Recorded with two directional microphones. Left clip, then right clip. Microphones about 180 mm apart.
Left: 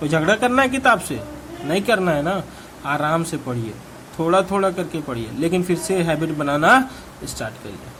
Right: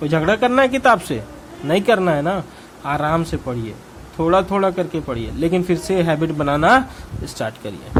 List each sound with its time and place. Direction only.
0.0 s speech: 15° right (ahead or behind)